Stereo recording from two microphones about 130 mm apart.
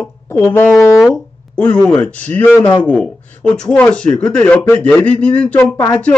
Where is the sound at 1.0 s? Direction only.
10° left (ahead or behind).